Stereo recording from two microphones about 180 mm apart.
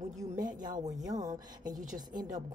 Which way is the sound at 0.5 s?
45° right (ahead or behind).